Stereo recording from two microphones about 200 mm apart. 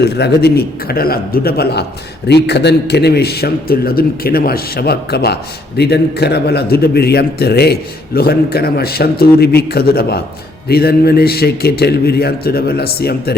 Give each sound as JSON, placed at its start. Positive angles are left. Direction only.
{"t": 0.0, "sound": "a man's voice", "side_deg": 55}